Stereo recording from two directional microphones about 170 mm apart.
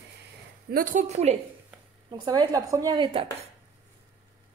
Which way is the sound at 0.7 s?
55° right (ahead or behind).